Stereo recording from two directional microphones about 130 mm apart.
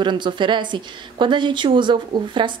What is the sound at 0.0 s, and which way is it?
A woman's voice, 35° right (ahead or behind).